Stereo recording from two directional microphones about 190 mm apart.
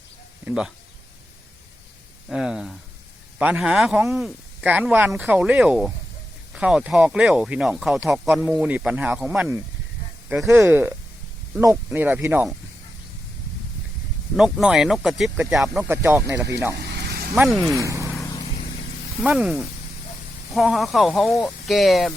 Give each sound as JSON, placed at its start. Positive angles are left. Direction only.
{"t": 0.4, "sound": "speech", "side_deg": -5}
{"t": 2.3, "sound": "speech", "side_deg": -5}
{"t": 14.3, "sound": "speech", "side_deg": -5}
{"t": 16.7, "sound": "vehicle", "side_deg": -60}
{"t": 17.3, "sound": "speech", "side_deg": 0}
{"t": 17.7, "sound": "speech", "side_deg": -15}
{"t": 18.1, "sound": "vehicle", "side_deg": 15}
{"t": 19.2, "sound": "speech", "side_deg": -5}